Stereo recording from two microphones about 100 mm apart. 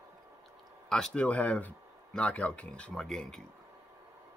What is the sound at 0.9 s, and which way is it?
Speech, 5° left (ahead or behind).